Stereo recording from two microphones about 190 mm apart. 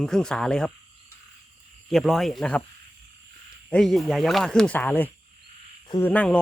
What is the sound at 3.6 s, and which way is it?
Speech, 5° left (ahead or behind).